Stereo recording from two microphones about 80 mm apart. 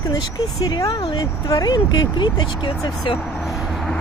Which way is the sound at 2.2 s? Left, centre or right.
Left.